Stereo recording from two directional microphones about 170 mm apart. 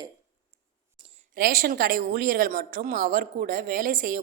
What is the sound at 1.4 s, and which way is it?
A woman's voice, 55° right (ahead or behind).